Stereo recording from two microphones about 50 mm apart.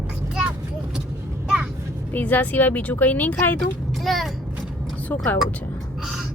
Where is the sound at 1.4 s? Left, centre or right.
Centre.